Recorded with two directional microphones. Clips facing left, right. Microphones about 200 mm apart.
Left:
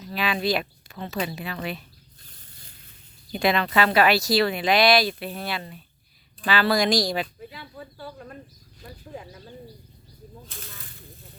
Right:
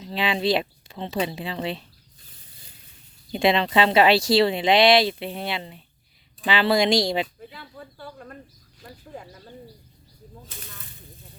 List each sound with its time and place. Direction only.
0.0 s speech: 25° right (ahead or behind)
3.3 s speech: 25° right (ahead or behind)
7.5 s speech: 5° left (ahead or behind)